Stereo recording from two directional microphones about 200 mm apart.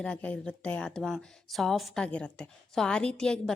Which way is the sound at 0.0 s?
5° left (ahead or behind).